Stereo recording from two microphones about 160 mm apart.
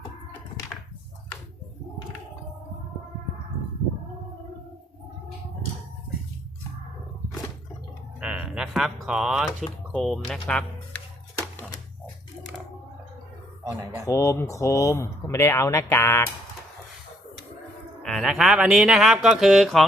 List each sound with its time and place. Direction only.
8.2 s typewriter: 5° right (ahead or behind)
9.9 s speech: centre (ahead or behind)
13.7 s speech: 15° right (ahead or behind)
14.0 s speech: 20° left (ahead or behind)
18.0 s speech: centre (ahead or behind)